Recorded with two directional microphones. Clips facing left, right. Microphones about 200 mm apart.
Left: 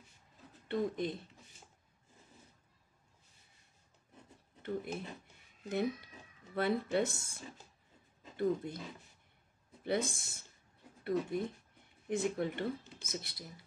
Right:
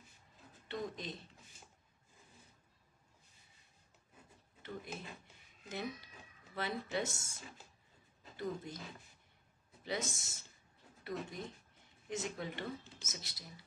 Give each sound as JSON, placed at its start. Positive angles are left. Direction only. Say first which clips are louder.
{"t": 0.7, "sound": "speech", "louder": "left 8 dB", "side_deg": 55}
{"t": 5.7, "sound": "speech", "louder": "left 8 dB", "side_deg": 55}
{"t": 9.8, "sound": "speech", "louder": "left 6 dB", "side_deg": 55}